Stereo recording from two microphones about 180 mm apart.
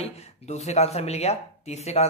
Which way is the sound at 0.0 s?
40° left (ahead or behind).